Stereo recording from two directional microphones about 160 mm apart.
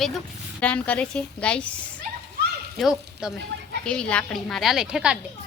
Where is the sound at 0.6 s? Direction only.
10° left (ahead or behind).